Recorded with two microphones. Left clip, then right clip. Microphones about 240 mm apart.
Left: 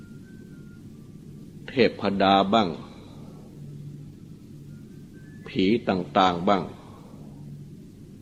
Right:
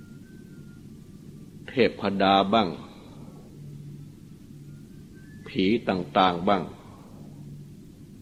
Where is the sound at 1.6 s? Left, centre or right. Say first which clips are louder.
Left 1 dB; right.